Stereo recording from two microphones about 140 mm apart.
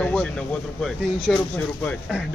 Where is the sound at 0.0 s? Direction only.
5° left (ahead or behind).